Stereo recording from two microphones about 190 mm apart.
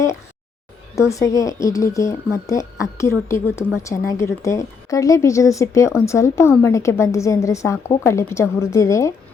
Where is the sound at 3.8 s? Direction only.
15° left (ahead or behind).